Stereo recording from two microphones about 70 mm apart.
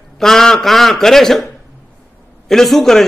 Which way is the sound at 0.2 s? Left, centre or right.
Centre.